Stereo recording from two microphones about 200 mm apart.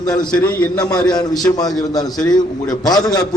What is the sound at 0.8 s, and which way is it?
A man's voice, 20° left (ahead or behind).